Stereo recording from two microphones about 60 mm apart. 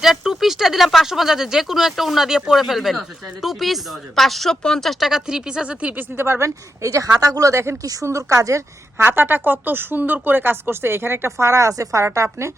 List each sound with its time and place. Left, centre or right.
0.0 s speech: centre
6.0 s speech: right
6.8 s speech: right
7.5 s speech: right
8.0 s a woman's voice: right
9.0 s speech: right
11.3 s a woman's voice: right